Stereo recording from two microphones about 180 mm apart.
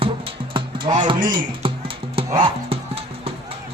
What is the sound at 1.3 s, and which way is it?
Typing, 30° right (ahead or behind).